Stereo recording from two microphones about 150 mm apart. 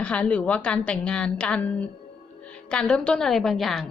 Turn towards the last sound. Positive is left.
turn(degrees=0)  # may be behind; listen again after turning